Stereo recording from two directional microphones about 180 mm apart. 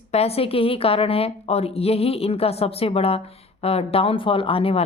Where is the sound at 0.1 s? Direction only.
35° left (ahead or behind).